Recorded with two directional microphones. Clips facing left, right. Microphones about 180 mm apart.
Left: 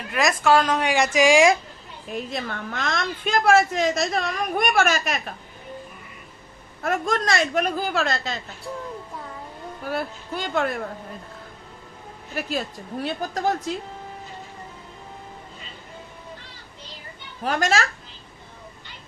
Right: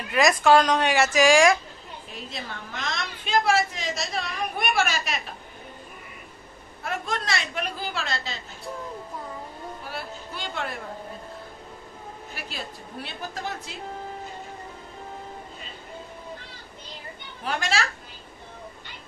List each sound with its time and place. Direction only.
0.1 s a woman's voice: centre (ahead or behind)
1.1 s speech: 20° left (ahead or behind)
2.3 s a woman's voice: 55° left (ahead or behind)
6.8 s a woman's voice: 45° left (ahead or behind)
9.8 s a woman's voice: 45° left (ahead or behind)
12.4 s a woman's voice: 45° left (ahead or behind)
17.4 s a woman's voice: 40° left (ahead or behind)